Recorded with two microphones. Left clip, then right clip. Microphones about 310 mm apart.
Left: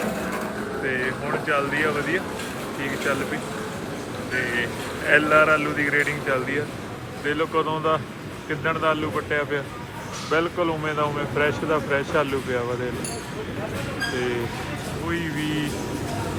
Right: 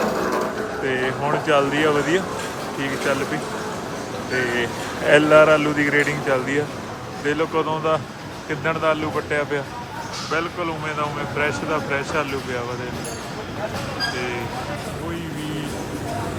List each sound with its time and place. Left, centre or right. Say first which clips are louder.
0.9 s speech: right 4 dB; centre
4.4 s speech: right 2 dB; centre
15.1 s speech: left 3 dB; centre